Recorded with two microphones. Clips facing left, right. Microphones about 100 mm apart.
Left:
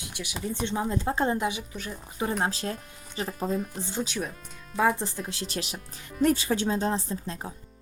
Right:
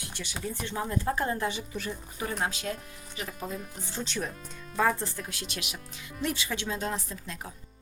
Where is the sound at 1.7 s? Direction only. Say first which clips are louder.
Right 2 dB; centre (ahead or behind).